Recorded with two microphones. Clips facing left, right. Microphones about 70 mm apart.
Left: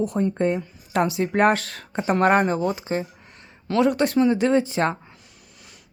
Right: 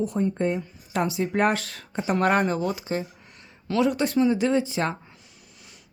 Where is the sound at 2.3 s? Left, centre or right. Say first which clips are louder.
Left 3 dB; left.